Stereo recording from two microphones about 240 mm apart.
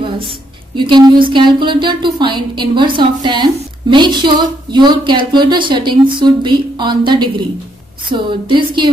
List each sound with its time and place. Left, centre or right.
0.7 s a woman's voice: centre